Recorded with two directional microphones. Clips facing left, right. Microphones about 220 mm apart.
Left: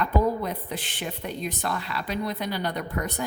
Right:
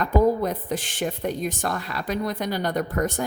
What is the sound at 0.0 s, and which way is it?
A woman's voice, 45° right (ahead or behind).